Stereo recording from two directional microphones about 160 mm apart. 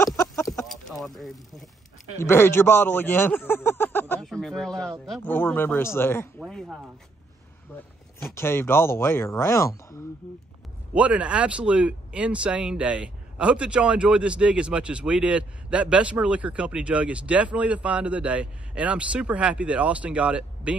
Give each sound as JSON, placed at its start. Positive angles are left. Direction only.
{"t": 0.0, "sound": "chicken", "side_deg": 20}
{"t": 0.7, "sound": "speech", "side_deg": 0}
{"t": 2.1, "sound": "speech", "side_deg": 15}
{"t": 4.2, "sound": "a sound", "side_deg": 5}
{"t": 5.0, "sound": "speech", "side_deg": 0}
{"t": 5.3, "sound": "speech", "side_deg": 10}
{"t": 6.4, "sound": "a sound", "side_deg": 0}
{"t": 8.2, "sound": "speech", "side_deg": 15}
{"t": 11.0, "sound": "speech", "side_deg": -10}